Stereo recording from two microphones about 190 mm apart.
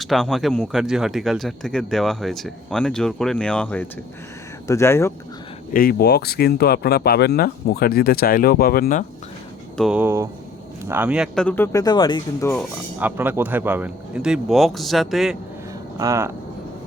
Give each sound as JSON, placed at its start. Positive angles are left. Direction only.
{"t": 0.0, "sound": "speech", "side_deg": 0}
{"t": 5.7, "sound": "speech", "side_deg": 50}
{"t": 9.7, "sound": "a man's voice", "side_deg": -5}
{"t": 11.4, "sound": "speech", "side_deg": 10}
{"t": 13.0, "sound": "speech", "side_deg": -10}
{"t": 16.0, "sound": "a man's voice", "side_deg": -15}